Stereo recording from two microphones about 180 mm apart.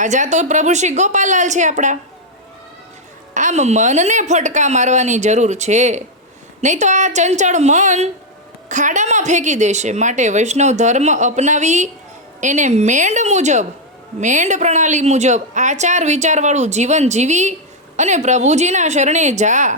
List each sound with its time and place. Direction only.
0.0 s a woman's voice: 40° right (ahead or behind)
3.3 s a woman's voice: 40° right (ahead or behind)